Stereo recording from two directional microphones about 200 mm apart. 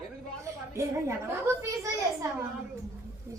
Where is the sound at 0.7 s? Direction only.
15° right (ahead or behind).